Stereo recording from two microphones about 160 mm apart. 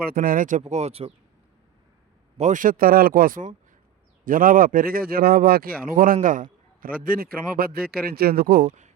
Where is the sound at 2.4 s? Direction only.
55° right (ahead or behind); by 8.6 s 70° right (ahead or behind).